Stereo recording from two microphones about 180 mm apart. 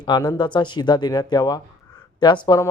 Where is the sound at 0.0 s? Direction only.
25° left (ahead or behind).